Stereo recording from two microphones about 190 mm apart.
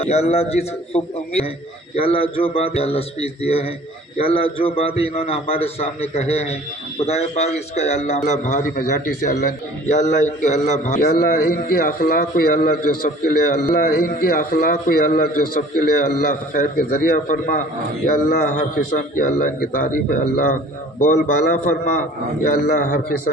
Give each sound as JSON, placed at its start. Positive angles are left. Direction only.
{"t": 0.0, "sound": "a man's voice", "side_deg": 35}